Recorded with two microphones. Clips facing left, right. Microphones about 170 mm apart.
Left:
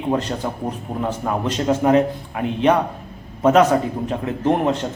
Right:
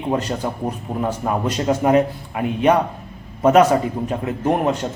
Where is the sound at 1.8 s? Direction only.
10° right (ahead or behind).